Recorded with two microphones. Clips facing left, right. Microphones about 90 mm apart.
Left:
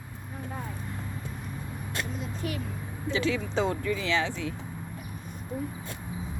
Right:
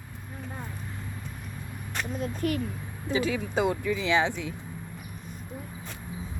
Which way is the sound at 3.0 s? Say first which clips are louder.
Right 1 dB; 10° right (ahead or behind).